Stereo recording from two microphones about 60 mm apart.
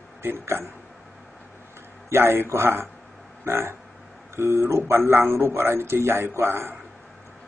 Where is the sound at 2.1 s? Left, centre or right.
Right.